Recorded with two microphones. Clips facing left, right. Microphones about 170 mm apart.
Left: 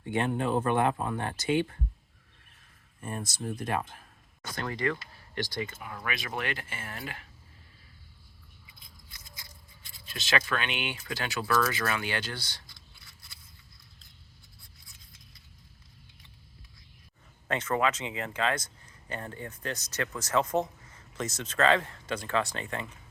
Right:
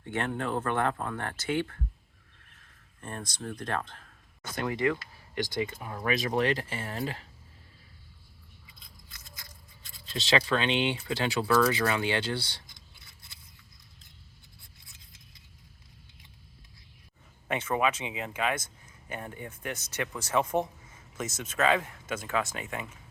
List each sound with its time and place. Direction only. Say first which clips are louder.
0.0 s speech: left 3 dB; 15° left (ahead or behind)
3.0 s speech: left 2 dB; 10° left (ahead or behind)
4.5 s speech: right 3 dB; 15° right (ahead or behind)
6.1 s speech: right 8 dB; 35° right (ahead or behind)
9.1 s a sound: right 1 dB; 50° right (ahead or behind)
10.1 s speech: right 4 dB; 30° right (ahead or behind)
17.5 s speech: even; 10° right (ahead or behind)